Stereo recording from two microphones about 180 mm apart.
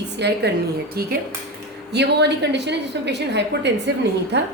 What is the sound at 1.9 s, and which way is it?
A woman's voice, 70° right (ahead or behind).